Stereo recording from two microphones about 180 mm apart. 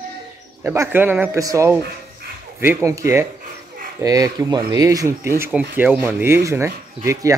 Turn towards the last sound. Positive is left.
turn(degrees=-15)  # may be behind; listen again after turning